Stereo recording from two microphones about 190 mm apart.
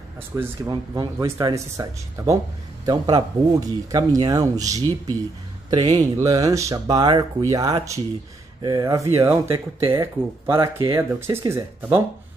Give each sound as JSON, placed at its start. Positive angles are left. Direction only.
{"t": 0.4, "sound": "speech", "side_deg": -15}
{"t": 5.9, "sound": "speech", "side_deg": -20}